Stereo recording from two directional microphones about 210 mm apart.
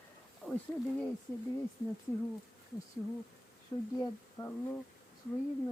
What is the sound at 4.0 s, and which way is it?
Speech, 10° left (ahead or behind).